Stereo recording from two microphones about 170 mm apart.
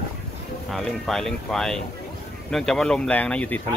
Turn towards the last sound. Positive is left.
turn(degrees=10)  # may be behind; listen again after turning